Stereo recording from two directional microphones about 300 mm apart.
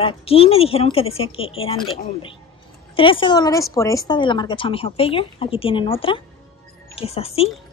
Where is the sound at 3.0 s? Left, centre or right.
Centre.